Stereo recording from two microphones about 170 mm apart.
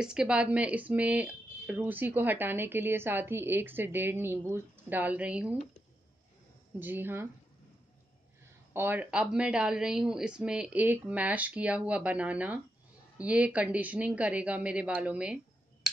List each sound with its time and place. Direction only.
0.0 s speech: 5° right (ahead or behind)
6.8 s speech: 10° right (ahead or behind)
8.7 s speech: 10° right (ahead or behind)